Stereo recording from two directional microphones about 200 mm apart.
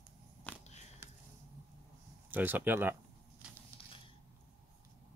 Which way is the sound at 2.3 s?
10° right (ahead or behind).